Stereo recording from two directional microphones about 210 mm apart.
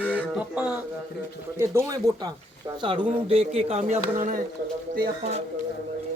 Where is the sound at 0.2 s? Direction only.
5° right (ahead or behind); by 5.4 s 30° right (ahead or behind).